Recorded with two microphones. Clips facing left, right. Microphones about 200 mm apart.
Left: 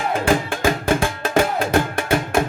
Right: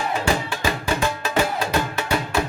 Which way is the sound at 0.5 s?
50° left (ahead or behind).